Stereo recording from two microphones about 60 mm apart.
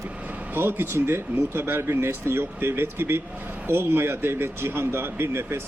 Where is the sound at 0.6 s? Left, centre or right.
Right.